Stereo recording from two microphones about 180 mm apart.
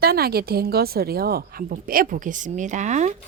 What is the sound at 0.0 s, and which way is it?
A woman's voice, 60° right (ahead or behind).